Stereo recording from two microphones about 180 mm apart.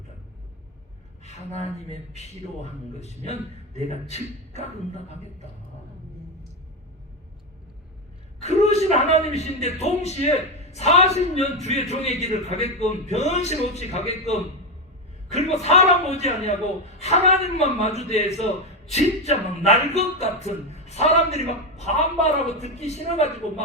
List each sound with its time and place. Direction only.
1.2 s speech: 35° left (ahead or behind)
3.8 s speech: 40° left (ahead or behind)
8.4 s a sound: 35° left (ahead or behind)
9.0 s speech: 35° left (ahead or behind)
15.6 s speech: 35° left (ahead or behind)